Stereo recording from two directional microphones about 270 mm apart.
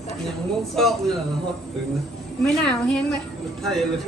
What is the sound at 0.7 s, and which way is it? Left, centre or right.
Speech, centre.